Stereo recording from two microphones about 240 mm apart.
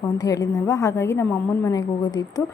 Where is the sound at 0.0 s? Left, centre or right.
Centre.